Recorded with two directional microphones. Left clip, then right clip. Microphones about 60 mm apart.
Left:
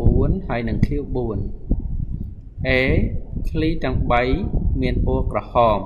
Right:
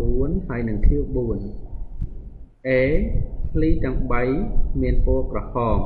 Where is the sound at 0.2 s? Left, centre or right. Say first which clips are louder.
Left 2 dB; left.